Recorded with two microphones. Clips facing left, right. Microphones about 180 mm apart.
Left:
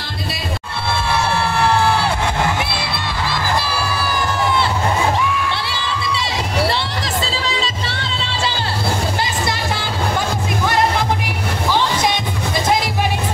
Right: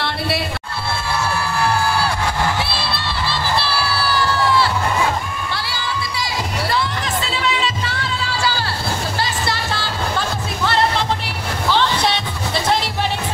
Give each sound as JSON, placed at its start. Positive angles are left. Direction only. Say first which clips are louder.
{"t": 2.8, "sound": "crowd", "louder": "left 1 dB", "side_deg": 15}
{"t": 5.1, "sound": "crowd", "louder": "left 6 dB", "side_deg": 85}
{"t": 5.6, "sound": "crowd", "louder": "left 2 dB", "side_deg": 25}
{"t": 6.7, "sound": "music", "louder": "right 1 dB", "side_deg": 35}
{"t": 10.6, "sound": "music", "louder": "even", "side_deg": 15}